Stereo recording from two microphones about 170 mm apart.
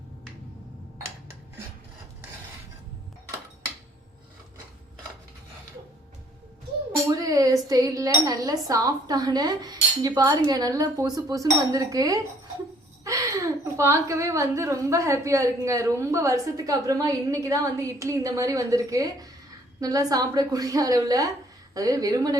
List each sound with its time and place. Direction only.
6.9 s a woman's voice: 20° right (ahead or behind)